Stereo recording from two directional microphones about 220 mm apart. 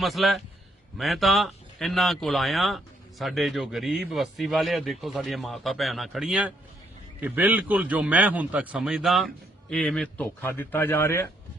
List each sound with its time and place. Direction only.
0.0 s a man's voice: centre (ahead or behind)